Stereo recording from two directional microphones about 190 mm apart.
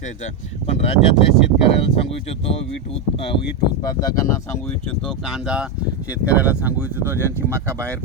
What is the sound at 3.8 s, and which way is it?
Speech, 20° left (ahead or behind).